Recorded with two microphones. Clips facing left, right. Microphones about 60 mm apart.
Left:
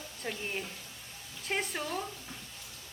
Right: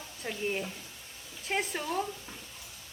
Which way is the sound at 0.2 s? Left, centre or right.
Centre.